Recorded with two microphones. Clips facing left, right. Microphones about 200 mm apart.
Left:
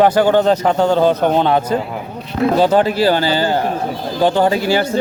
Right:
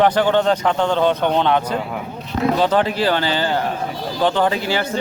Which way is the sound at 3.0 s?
40° left (ahead or behind).